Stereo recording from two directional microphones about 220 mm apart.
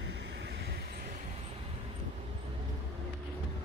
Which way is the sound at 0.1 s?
50° right (ahead or behind).